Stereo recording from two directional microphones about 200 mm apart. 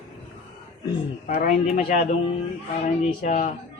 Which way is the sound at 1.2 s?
45° left (ahead or behind).